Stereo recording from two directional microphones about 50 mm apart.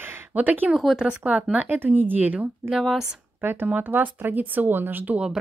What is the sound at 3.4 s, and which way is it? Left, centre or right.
Speech, right.